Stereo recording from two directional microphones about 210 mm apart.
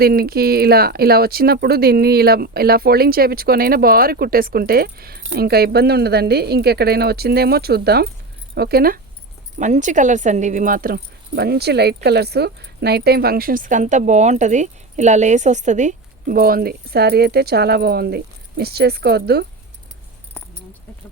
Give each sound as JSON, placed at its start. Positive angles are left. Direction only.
{"t": 0.0, "sound": "speech", "side_deg": -45}
{"t": 9.6, "sound": "speech", "side_deg": -35}